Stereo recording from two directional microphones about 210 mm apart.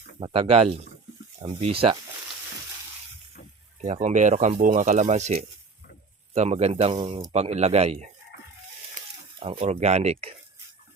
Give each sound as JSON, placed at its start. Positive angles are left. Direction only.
{"t": 0.2, "sound": "speech", "side_deg": -25}
{"t": 3.8, "sound": "speech", "side_deg": -30}
{"t": 9.0, "sound": "a sound", "side_deg": -40}
{"t": 9.4, "sound": "speech", "side_deg": -30}